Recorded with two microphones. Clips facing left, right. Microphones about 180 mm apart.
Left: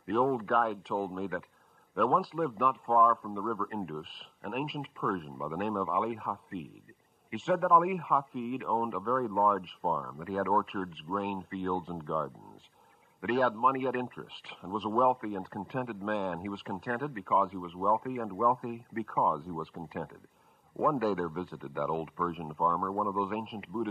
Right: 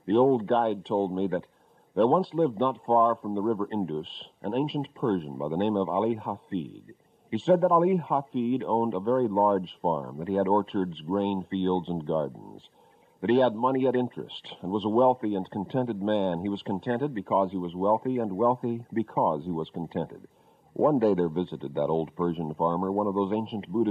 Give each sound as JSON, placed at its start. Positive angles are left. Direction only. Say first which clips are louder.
{"t": 0.3, "sound": "a man's voice", "louder": "right 6 dB", "side_deg": -30}
{"t": 8.3, "sound": "speech", "louder": "right 9 dB", "side_deg": 0}
{"t": 8.7, "sound": "a man's voice", "louder": "right 5 dB", "side_deg": -30}
{"t": 16.1, "sound": "speech", "louder": "right 7 dB", "side_deg": 0}
{"t": 16.3, "sound": "a man's voice", "louder": "right 8 dB", "side_deg": -30}